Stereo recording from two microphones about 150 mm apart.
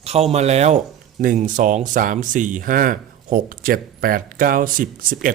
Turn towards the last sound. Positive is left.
turn(degrees=-70)  # may be behind; listen again after turning